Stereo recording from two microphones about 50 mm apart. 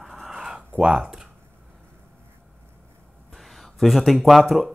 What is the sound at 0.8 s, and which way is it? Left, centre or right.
Speech, centre.